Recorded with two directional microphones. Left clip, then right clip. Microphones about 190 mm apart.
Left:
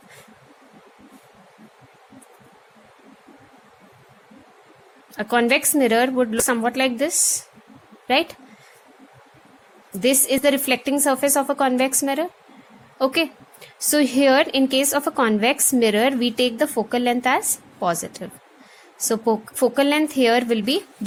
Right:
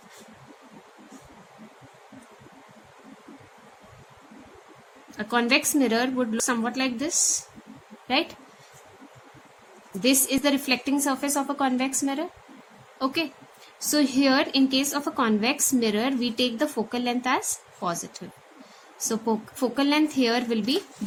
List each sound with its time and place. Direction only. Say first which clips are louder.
5.1 s a woman's voice: left 4 dB; 40° left (ahead or behind)
10.0 s a woman's voice: left 5 dB; 40° left (ahead or behind)
13.9 s a woman's voice: left 6 dB; 40° left (ahead or behind)